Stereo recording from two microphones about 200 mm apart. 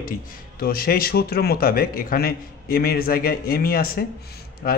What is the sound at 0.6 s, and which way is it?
A man's voice, 50° left (ahead or behind).